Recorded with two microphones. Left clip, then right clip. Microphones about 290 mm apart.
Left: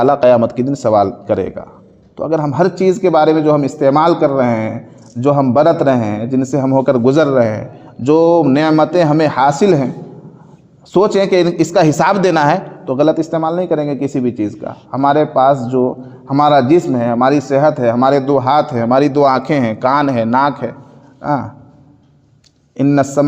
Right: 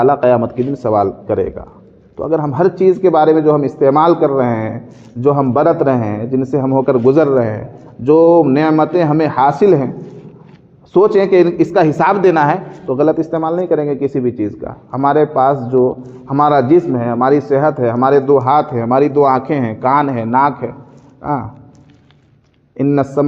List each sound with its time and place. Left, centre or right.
0.0 s a woman's voice: left
10.9 s a woman's voice: left
22.8 s a woman's voice: left